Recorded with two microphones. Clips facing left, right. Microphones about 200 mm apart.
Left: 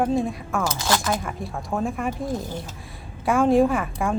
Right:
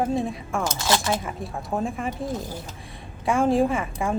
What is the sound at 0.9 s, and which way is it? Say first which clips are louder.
Speech: right 1 dB; 25° right (ahead or behind).